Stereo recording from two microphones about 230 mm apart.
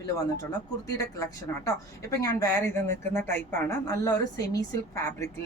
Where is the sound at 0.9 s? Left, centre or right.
Centre.